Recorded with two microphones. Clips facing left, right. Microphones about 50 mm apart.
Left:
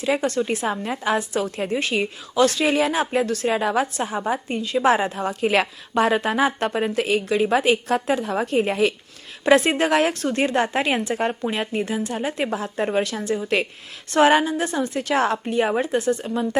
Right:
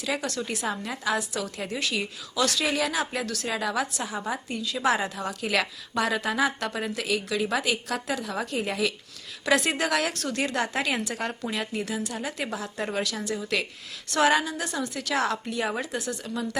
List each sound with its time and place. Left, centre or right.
0.0 s a woman's voice: left